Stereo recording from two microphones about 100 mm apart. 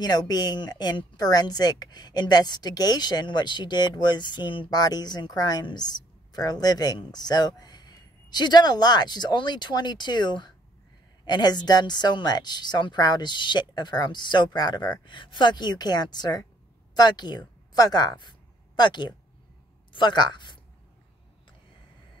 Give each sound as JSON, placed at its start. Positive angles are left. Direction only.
{"t": 0.0, "sound": "a woman's voice", "side_deg": 45}